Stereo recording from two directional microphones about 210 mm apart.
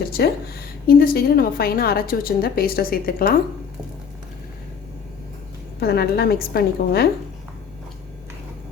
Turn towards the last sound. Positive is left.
turn(degrees=50)  # may be behind; listen again after turning